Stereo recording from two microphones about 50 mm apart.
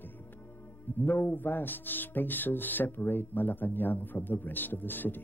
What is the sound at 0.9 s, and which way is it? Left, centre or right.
Speech, left.